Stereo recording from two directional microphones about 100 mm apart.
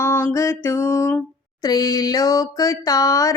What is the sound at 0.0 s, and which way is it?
Music, 25° left (ahead or behind).